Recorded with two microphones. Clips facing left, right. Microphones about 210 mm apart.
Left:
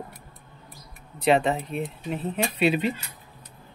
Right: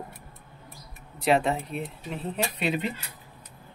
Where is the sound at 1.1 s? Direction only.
Centre (ahead or behind).